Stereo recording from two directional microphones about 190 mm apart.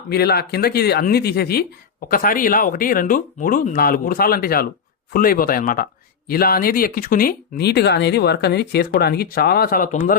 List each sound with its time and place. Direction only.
0.1 s speech: 55° left (ahead or behind)